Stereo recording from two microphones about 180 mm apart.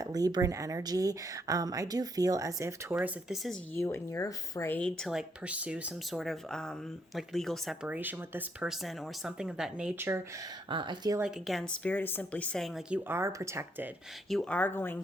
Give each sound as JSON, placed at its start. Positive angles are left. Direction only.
{"t": 0.0, "sound": "speech", "side_deg": -20}
{"t": 2.9, "sound": "speech", "side_deg": -5}
{"t": 3.8, "sound": "speech", "side_deg": 15}
{"t": 7.9, "sound": "speech", "side_deg": -10}
{"t": 10.7, "sound": "speech", "side_deg": -25}
{"t": 11.2, "sound": "speech", "side_deg": 0}
{"t": 13.1, "sound": "speech", "side_deg": -15}
{"t": 14.3, "sound": "speech", "side_deg": 5}